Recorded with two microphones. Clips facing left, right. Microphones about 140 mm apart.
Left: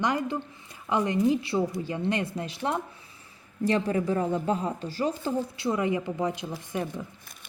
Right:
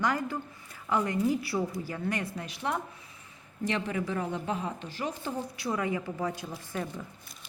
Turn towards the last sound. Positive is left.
turn(degrees=20)  # may be behind; listen again after turning